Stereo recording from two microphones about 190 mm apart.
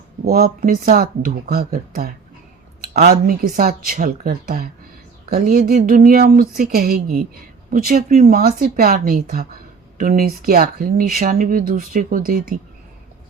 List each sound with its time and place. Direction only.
0.3 s speech: 55° right (ahead or behind)